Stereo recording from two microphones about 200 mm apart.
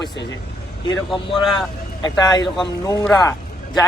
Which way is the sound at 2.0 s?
20° left (ahead or behind).